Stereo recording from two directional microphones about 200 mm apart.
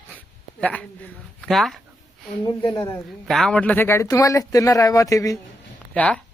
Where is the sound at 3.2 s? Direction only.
5° left (ahead or behind).